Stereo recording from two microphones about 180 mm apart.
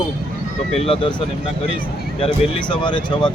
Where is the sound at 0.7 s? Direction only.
35° left (ahead or behind).